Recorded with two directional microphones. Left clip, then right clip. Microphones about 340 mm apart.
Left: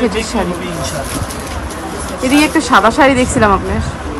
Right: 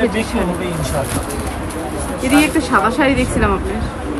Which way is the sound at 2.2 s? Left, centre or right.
Centre.